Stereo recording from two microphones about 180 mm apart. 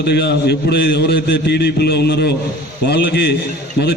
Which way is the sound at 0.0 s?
70° left (ahead or behind).